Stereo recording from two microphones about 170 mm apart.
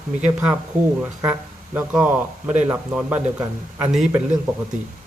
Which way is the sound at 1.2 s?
10° right (ahead or behind).